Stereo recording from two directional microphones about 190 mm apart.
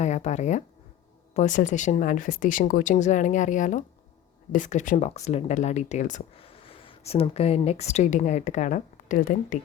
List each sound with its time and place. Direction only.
0.0 s speech: 35° left (ahead or behind)